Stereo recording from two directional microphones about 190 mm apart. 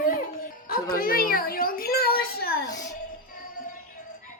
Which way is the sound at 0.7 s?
50° left (ahead or behind).